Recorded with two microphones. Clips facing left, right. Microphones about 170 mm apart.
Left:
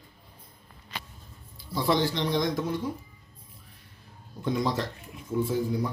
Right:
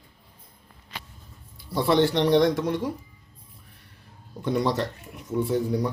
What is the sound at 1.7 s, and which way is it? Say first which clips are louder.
Speech: right 5 dB; 65° right (ahead or behind).